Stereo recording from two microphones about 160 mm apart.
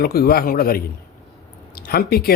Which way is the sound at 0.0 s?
70° left (ahead or behind).